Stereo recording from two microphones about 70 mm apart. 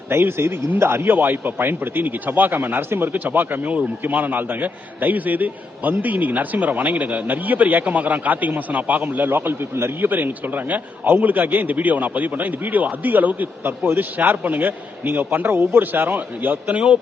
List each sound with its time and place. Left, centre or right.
0.1 s a man's voice: right; by 17.0 s centre